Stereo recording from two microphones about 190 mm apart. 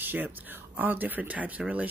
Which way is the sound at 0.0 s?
10° right (ahead or behind).